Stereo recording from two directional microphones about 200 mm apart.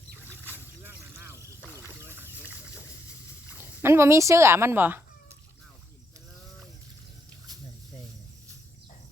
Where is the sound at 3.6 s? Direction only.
10° right (ahead or behind).